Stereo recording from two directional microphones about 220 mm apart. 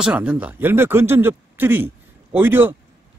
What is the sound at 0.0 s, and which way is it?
A man's voice, 5° right (ahead or behind).